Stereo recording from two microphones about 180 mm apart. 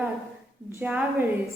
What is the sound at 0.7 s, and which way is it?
Speech, 10° right (ahead or behind).